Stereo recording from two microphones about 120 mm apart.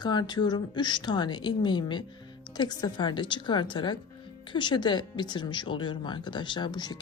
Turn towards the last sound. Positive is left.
turn(degrees=35)  # may be behind; listen again after turning